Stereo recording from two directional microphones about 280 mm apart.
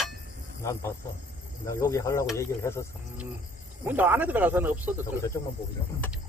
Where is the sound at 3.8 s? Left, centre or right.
Centre.